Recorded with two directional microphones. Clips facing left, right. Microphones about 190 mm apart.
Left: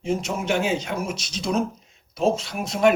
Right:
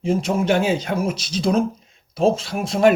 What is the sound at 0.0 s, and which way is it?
Speech, 30° right (ahead or behind).